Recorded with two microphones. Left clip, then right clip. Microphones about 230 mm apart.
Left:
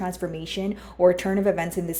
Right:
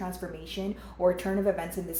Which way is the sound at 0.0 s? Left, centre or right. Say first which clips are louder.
Left 7 dB; left.